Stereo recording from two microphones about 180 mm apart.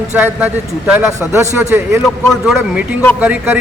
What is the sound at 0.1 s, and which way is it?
A man's voice, 10° right (ahead or behind).